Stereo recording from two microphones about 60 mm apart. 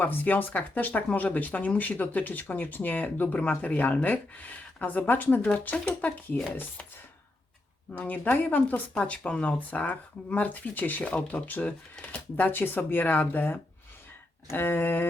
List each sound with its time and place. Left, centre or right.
0.0 s speech: left
5.6 s speech: left
7.9 s speech: left
11.1 s speech: centre
11.4 s speech: left